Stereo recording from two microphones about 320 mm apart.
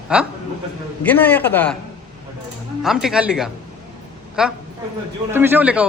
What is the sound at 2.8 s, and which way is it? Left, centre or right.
A man's voice, centre.